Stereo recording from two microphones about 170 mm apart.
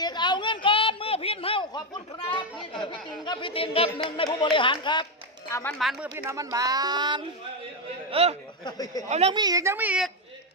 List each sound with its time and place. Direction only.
0.0 s a sound: 25° left (ahead or behind)
2.8 s speech: 30° left (ahead or behind)
5.5 s speech: 15° left (ahead or behind)
5.8 s speech: centre (ahead or behind)
6.1 s speech: 20° right (ahead or behind)
8.1 s speech: 35° right (ahead or behind)
8.6 s speech: 20° left (ahead or behind)
9.0 s speech: 40° right (ahead or behind)
9.3 s a woman's voice: 20° right (ahead or behind)